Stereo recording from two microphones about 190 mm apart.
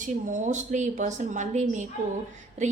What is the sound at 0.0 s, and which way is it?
A woman's voice, 40° right (ahead or behind).